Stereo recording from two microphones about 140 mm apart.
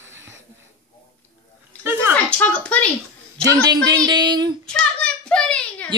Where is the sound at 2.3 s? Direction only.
10° left (ahead or behind).